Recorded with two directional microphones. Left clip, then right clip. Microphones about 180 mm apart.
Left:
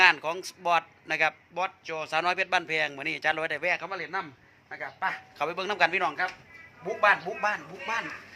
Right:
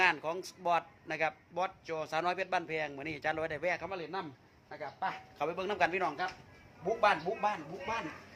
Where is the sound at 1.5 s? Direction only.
10° right (ahead or behind).